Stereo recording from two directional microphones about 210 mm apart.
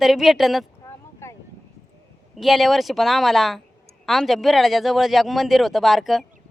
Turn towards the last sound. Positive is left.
turn(degrees=0)  # may be behind; listen again after turning